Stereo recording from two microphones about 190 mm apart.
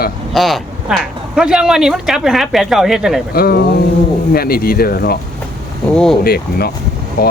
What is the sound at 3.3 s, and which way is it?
Speech, 55° left (ahead or behind).